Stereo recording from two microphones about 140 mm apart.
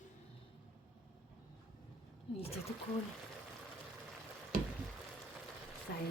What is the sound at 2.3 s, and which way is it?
Speech, 45° left (ahead or behind).